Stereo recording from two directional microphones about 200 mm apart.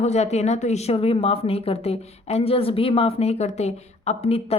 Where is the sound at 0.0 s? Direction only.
35° left (ahead or behind).